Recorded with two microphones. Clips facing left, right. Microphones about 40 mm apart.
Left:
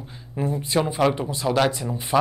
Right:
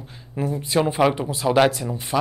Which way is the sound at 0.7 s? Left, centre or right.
Centre.